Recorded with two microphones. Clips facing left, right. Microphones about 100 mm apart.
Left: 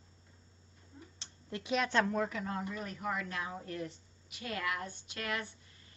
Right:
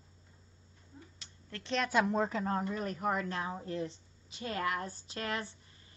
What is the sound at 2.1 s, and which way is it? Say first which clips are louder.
A woman's voice: right 3 dB; 30° right (ahead or behind).